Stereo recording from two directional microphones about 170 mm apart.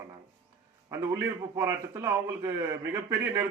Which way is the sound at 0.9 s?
20° right (ahead or behind).